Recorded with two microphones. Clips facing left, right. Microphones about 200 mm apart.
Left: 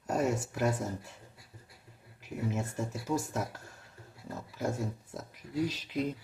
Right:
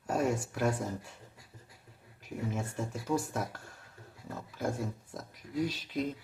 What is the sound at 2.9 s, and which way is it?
Speech, 5° left (ahead or behind).